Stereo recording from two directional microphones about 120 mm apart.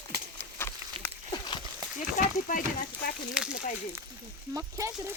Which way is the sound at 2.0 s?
90° left.